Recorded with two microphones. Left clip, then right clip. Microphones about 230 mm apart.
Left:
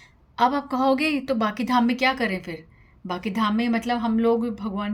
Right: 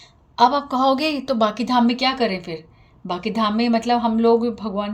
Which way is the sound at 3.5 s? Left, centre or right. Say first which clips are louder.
Right 6 dB; left.